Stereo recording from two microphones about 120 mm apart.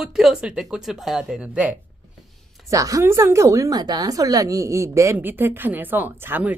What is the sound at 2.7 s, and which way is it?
A woman's voice, 25° right (ahead or behind).